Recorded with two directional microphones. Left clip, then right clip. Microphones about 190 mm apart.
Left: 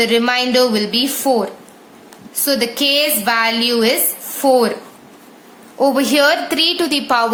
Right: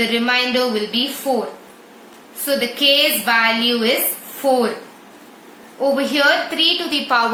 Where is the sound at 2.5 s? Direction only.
75° left (ahead or behind).